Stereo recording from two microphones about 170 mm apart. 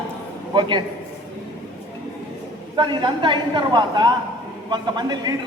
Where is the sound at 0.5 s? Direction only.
30° right (ahead or behind).